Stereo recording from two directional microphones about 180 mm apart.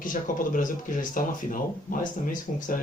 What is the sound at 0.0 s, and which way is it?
Speech, 50° left (ahead or behind).